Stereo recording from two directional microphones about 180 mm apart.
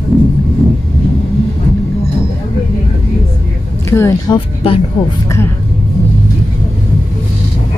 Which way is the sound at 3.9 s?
15° left (ahead or behind).